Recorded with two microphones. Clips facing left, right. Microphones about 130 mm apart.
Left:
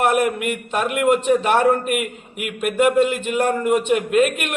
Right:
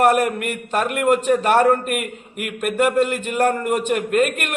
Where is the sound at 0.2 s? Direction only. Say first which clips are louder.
Left 1 dB; 5° left (ahead or behind).